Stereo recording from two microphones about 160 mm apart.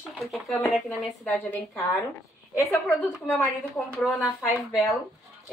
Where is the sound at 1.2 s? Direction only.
10° left (ahead or behind).